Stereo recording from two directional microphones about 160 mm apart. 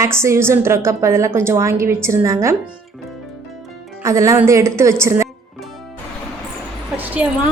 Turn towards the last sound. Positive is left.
turn(degrees=-10)  # may be behind; listen again after turning